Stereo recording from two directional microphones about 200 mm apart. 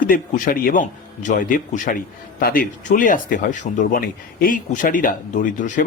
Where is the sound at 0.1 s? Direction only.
45° left (ahead or behind).